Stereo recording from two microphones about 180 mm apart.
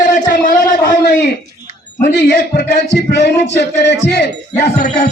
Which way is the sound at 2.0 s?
70° left (ahead or behind).